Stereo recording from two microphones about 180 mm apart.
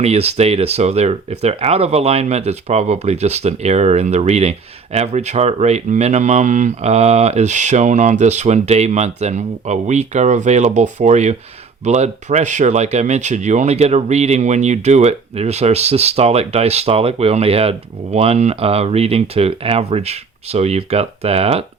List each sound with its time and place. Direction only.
0.0 s speech: 35° right (ahead or behind)